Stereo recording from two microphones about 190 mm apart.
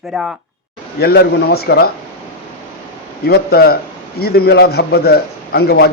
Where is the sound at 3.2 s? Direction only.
55° left (ahead or behind).